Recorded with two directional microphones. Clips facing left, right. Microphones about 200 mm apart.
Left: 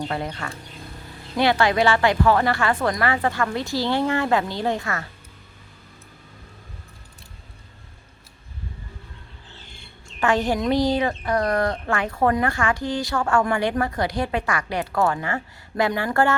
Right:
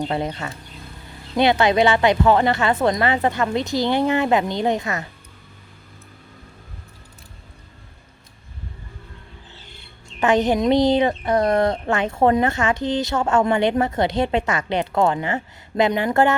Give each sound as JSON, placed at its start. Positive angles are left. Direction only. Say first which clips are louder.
{"t": 0.0, "sound": "speech", "louder": "right 4 dB", "side_deg": -20}
{"t": 10.2, "sound": "speech", "louder": "right 4 dB", "side_deg": -20}